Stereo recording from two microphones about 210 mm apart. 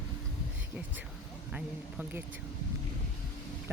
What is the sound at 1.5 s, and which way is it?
Speech, 5° right (ahead or behind).